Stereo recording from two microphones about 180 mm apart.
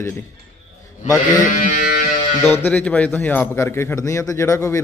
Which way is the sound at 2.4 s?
10° left (ahead or behind).